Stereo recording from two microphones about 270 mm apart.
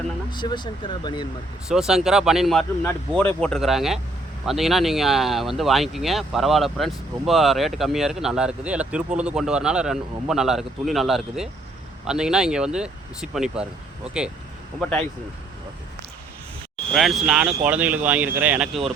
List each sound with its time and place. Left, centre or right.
0.3 s speech: centre
1.6 s speech: centre
16.9 s speech: centre